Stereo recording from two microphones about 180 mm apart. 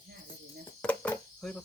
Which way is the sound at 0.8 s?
10° left (ahead or behind).